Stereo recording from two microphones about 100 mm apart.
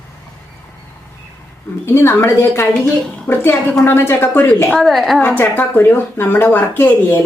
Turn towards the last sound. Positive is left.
turn(degrees=25)  # may be behind; listen again after turning